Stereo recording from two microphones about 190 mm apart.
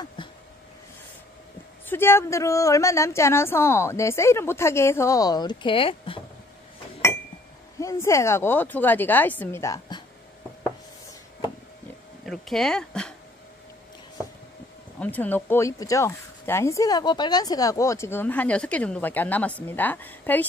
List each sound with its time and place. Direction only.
1.9 s speech: 10° left (ahead or behind); by 6.2 s 30° left (ahead or behind)
7.8 s speech: 15° left (ahead or behind)
12.3 s speech: centre (ahead or behind)
15.0 s speech: 10° left (ahead or behind)